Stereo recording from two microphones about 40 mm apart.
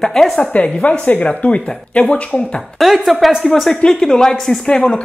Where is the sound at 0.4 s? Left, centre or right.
Left.